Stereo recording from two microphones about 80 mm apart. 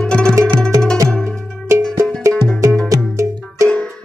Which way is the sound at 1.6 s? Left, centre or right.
Right.